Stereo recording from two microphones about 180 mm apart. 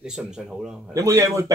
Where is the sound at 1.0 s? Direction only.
15° right (ahead or behind).